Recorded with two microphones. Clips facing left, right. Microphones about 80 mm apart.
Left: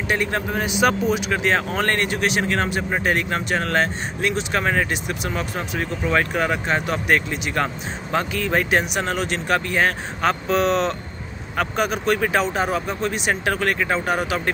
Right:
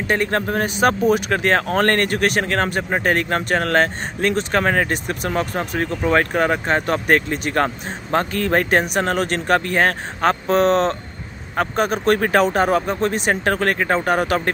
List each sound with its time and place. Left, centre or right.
0.1 s speech: right